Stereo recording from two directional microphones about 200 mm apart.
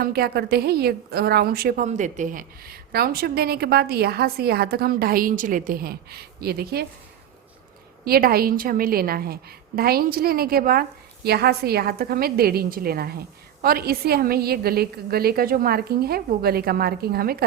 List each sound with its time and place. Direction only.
0.0 s a woman's voice: 50° right (ahead or behind)
8.0 s a woman's voice: 50° right (ahead or behind)